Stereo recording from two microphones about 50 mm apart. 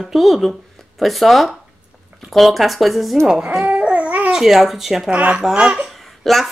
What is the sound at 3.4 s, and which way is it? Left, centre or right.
Babbling, right.